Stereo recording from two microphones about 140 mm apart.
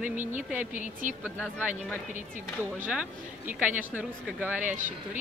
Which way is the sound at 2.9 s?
10° right (ahead or behind).